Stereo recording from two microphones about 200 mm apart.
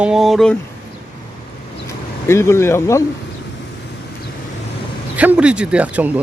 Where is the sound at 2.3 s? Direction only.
15° left (ahead or behind).